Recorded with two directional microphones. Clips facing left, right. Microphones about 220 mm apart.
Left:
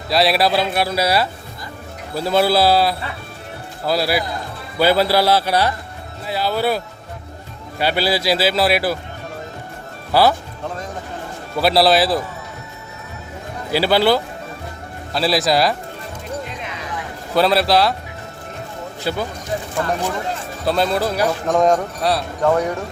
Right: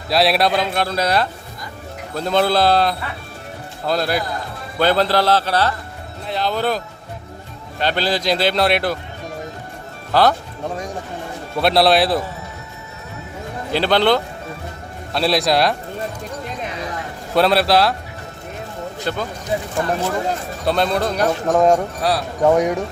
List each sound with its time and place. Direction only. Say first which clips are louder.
0.1 s a man's voice: even; centre (ahead or behind)
10.1 s speech: even; 10° left (ahead or behind)
11.5 s speech: even; centre (ahead or behind)
13.7 s a man's voice: left 1 dB; 5° left (ahead or behind)
17.3 s speech: even; centre (ahead or behind)
19.0 s a man's voice: left 2 dB; 10° left (ahead or behind)
19.8 s speech: even; 15° right (ahead or behind)
20.7 s speech: even; centre (ahead or behind)
22.4 s speech: right 3 dB; 15° right (ahead or behind)